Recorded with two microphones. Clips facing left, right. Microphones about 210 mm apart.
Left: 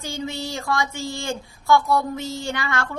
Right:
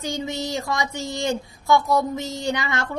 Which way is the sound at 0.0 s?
20° right (ahead or behind).